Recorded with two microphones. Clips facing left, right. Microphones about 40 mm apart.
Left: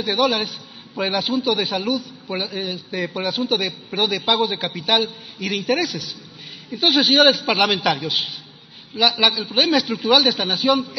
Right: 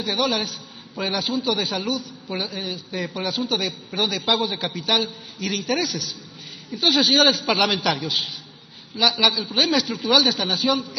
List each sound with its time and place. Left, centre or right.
0.0 s a man's voice: centre